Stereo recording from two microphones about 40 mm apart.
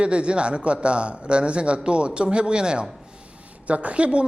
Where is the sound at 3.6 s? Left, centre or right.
Right.